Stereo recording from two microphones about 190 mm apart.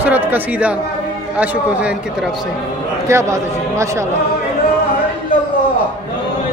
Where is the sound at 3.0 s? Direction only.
15° right (ahead or behind).